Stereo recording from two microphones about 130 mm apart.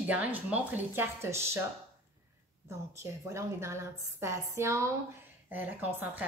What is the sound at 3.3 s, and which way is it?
A woman's voice, 20° right (ahead or behind).